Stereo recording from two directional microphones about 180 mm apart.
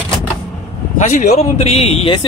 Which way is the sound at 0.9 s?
40° left (ahead or behind).